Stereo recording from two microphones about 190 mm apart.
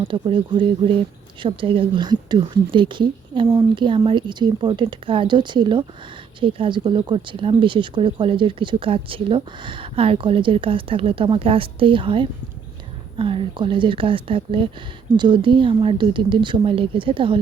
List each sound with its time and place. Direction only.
0.0 s speech: 30° right (ahead or behind)